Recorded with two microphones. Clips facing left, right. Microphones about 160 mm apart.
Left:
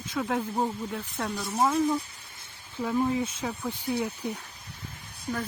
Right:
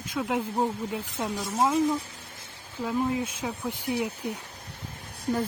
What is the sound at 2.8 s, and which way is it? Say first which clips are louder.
Speech: left 1 dB; 5° right (ahead or behind).